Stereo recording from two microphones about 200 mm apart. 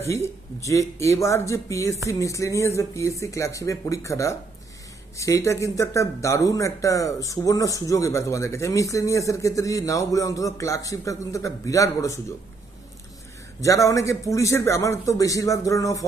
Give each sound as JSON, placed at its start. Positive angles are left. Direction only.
{"t": 0.0, "sound": "speech", "side_deg": 15}
{"t": 13.6, "sound": "speech", "side_deg": 15}